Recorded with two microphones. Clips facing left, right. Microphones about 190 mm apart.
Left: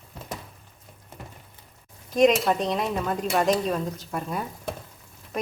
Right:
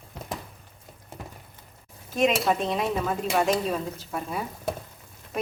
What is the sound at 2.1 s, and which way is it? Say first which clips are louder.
Speech: left 3 dB; 5° right (ahead or behind).